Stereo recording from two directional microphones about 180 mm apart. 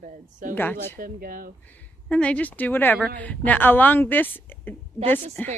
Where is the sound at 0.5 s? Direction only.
10° left (ahead or behind).